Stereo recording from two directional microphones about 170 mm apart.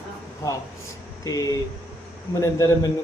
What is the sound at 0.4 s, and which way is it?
A man's voice, 20° left (ahead or behind).